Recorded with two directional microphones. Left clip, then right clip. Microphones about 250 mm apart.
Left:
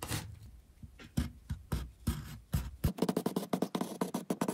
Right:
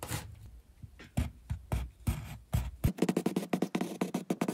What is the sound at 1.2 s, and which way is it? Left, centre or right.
Music, right.